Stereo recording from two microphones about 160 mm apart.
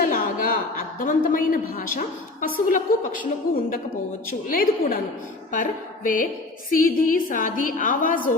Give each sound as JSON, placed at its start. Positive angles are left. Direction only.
{"t": 0.0, "sound": "a woman's voice", "side_deg": 60}
{"t": 4.4, "sound": "a woman's voice", "side_deg": 60}